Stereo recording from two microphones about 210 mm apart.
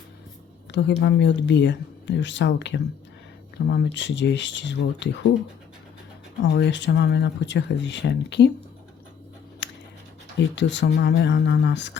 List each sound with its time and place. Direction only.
0.7 s speech: 55° left (ahead or behind)
6.5 s speech: 55° left (ahead or behind)
9.6 s scissors: 55° left (ahead or behind)
10.3 s speech: 55° left (ahead or behind)